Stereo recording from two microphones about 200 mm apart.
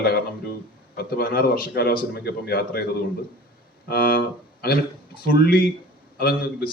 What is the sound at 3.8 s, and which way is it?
Speech, 50° left (ahead or behind).